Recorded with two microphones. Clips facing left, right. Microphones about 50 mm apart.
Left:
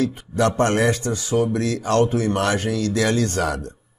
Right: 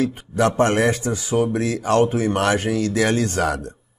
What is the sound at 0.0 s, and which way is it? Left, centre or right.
Speech, right.